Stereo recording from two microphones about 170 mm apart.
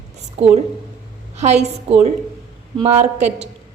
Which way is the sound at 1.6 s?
40° right (ahead or behind).